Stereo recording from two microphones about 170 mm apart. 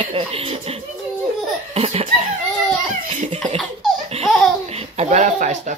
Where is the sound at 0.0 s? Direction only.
30° right (ahead or behind).